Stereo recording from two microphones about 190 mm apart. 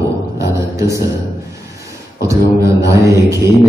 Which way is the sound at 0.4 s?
15° right (ahead or behind).